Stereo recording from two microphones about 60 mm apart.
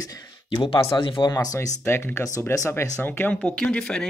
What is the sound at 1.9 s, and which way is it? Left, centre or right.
Speech, left.